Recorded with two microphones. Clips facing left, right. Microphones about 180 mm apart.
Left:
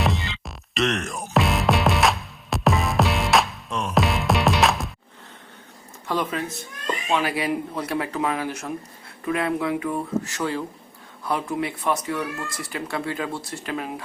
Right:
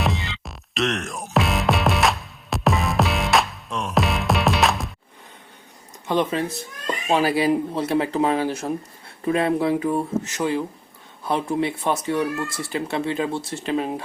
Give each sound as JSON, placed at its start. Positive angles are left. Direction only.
{"t": 0.0, "sound": "music", "side_deg": 0}
{"t": 6.1, "sound": "speech", "side_deg": -25}
{"t": 10.2, "sound": "speech", "side_deg": -20}